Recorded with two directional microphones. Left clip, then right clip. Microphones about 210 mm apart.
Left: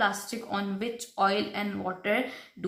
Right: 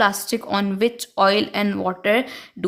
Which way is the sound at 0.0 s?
45° right (ahead or behind).